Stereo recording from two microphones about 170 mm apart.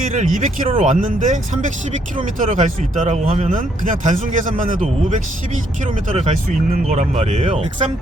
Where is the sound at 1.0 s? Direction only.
50° right (ahead or behind).